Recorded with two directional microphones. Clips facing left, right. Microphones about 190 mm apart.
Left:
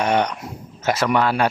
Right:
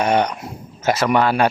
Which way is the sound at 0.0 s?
35° right (ahead or behind).